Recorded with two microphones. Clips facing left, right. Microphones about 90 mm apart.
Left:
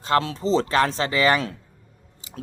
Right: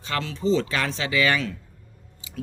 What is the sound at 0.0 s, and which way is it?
Speech, 40° left (ahead or behind).